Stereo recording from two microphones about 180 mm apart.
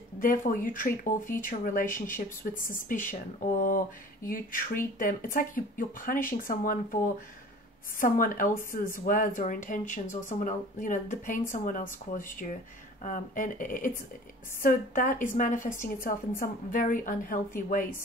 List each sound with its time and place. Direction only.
0.2 s speech: 50° left (ahead or behind)